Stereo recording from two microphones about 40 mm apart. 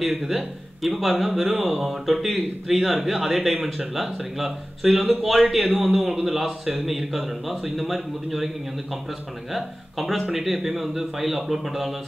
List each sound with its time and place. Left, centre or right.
0.0 s a man's voice: centre
9.5 s a man's voice: centre